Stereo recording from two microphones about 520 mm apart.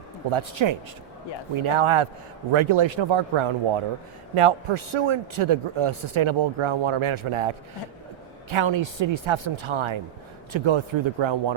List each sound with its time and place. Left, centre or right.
0.3 s a man's voice: right